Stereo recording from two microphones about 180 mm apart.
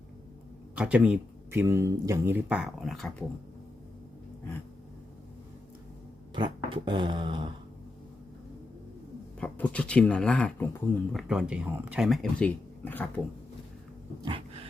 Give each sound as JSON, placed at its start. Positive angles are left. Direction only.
{"t": 0.8, "sound": "speech", "side_deg": -5}
{"t": 6.3, "sound": "a sound", "side_deg": -25}
{"t": 9.4, "sound": "speech", "side_deg": 5}
{"t": 14.2, "sound": "cat", "side_deg": -30}